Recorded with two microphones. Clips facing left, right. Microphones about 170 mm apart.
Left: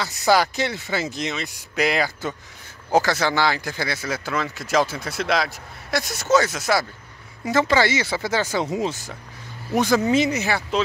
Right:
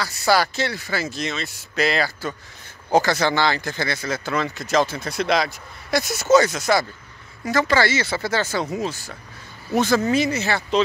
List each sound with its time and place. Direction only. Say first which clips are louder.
0.0 s speech: left 1 dB; 20° left (ahead or behind)
2.9 s speech: right 1 dB; 5° left (ahead or behind)
7.4 s speech: even; 20° left (ahead or behind)